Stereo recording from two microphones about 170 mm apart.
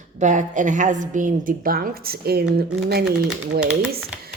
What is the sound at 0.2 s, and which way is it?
Speech, 45° right (ahead or behind).